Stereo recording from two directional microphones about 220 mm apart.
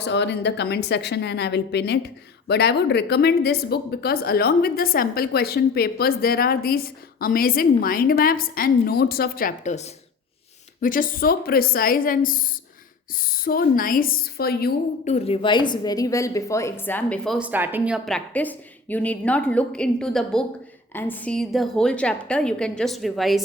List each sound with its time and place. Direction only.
0.0 s a woman's voice: 50° left (ahead or behind)
15.0 s a woman's voice: 30° left (ahead or behind); by 23.4 s centre (ahead or behind)